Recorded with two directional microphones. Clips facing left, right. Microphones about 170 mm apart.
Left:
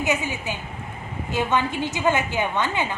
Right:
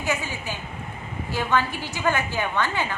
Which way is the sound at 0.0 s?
20° left (ahead or behind).